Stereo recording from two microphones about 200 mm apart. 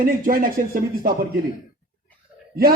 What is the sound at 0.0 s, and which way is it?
A man's voice, 45° right (ahead or behind).